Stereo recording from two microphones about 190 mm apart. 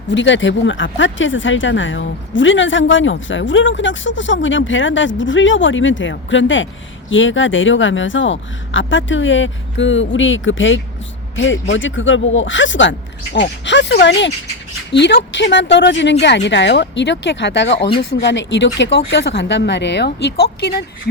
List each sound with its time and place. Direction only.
0.1 s speech: 75° left (ahead or behind); by 20.8 s 55° left (ahead or behind)